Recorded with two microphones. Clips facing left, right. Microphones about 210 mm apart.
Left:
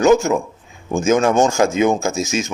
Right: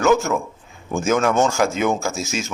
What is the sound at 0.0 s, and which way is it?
A man's voice, 15° left (ahead or behind).